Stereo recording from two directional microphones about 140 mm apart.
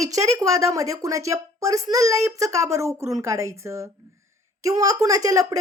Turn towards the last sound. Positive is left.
turn(degrees=-25)  # may be behind; listen again after turning